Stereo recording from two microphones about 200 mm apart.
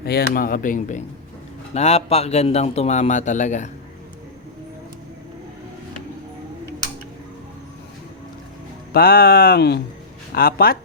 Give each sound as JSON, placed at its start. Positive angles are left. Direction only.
{"t": 0.0, "sound": "a man's voice", "side_deg": 50}
{"t": 8.9, "sound": "speech", "side_deg": 50}